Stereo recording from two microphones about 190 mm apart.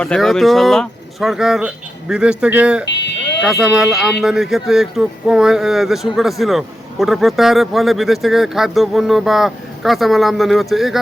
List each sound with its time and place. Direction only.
0.0 s speech: 5° left (ahead or behind)